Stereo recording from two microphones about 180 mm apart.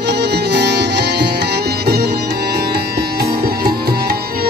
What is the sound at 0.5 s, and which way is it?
Music, 70° right (ahead or behind).